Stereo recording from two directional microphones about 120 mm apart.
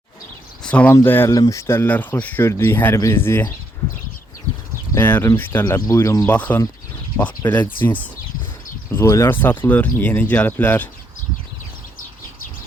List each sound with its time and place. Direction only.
0.6 s speech: 10° left (ahead or behind)
1.3 s speech: 30° left (ahead or behind)
4.9 s speech: 15° left (ahead or behind)
6.2 s speech: 15° left (ahead or behind)